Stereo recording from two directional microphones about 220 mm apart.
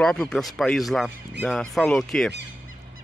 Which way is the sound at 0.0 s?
5° left (ahead or behind).